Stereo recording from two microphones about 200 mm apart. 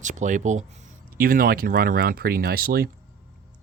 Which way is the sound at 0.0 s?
40° right (ahead or behind).